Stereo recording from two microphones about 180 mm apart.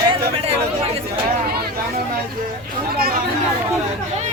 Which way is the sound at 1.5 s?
60° right (ahead or behind).